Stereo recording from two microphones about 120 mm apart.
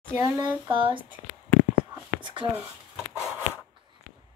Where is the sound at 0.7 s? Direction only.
45° right (ahead or behind).